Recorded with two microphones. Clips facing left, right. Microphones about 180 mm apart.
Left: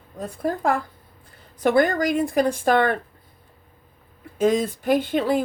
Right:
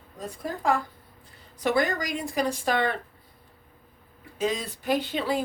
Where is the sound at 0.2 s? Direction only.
55° left (ahead or behind).